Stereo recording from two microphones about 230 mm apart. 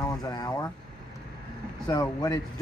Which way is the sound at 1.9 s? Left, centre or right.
Centre.